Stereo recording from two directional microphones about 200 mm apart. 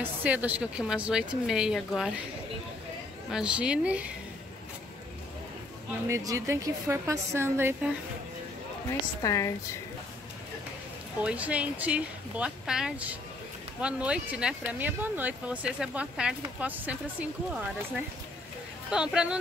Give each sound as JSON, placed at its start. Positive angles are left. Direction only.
{"t": 0.0, "sound": "a woman's voice", "side_deg": -10}
{"t": 3.3, "sound": "a woman's voice", "side_deg": -5}
{"t": 6.0, "sound": "speech", "side_deg": -15}
{"t": 9.2, "sound": "a woman's voice", "side_deg": 15}
{"t": 11.2, "sound": "speech", "side_deg": -5}
{"t": 18.9, "sound": "a woman's voice", "side_deg": -5}